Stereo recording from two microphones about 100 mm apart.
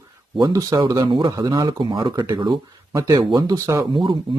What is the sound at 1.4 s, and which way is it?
Speech, 40° right (ahead or behind).